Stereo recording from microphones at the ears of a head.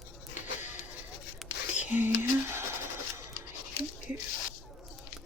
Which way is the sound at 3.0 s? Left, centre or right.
Left.